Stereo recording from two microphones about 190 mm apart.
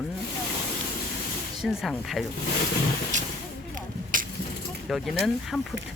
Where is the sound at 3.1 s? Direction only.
40° right (ahead or behind).